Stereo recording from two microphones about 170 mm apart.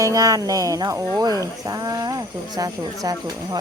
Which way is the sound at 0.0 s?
20° right (ahead or behind).